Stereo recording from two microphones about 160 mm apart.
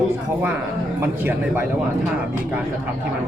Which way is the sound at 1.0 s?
10° right (ahead or behind).